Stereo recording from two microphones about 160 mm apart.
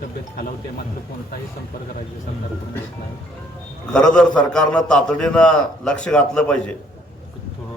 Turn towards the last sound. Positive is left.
turn(degrees=5)  # may be behind; listen again after turning